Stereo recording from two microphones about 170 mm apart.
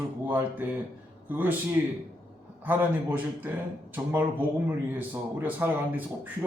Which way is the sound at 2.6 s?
10° right (ahead or behind).